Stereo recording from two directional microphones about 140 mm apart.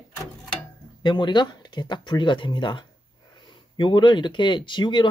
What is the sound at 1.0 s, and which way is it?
Speech, 30° left (ahead or behind).